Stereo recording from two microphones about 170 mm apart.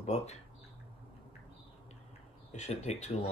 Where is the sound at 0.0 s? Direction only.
40° left (ahead or behind).